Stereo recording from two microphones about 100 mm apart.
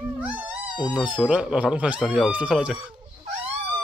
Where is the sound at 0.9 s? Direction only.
15° right (ahead or behind).